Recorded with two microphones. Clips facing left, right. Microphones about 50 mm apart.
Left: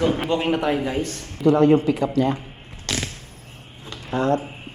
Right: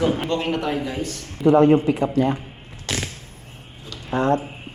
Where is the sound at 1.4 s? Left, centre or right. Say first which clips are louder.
Right 1 dB; right.